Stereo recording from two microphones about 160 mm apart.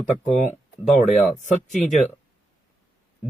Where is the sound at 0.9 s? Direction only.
Centre (ahead or behind).